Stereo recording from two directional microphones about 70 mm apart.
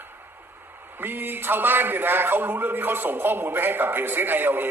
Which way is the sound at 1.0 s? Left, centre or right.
Right.